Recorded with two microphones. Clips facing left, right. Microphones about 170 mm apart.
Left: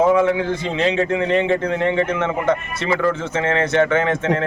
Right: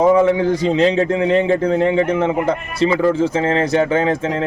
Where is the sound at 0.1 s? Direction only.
35° right (ahead or behind).